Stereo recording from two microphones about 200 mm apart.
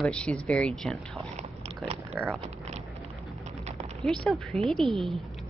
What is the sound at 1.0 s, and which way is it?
Biting, centre (ahead or behind).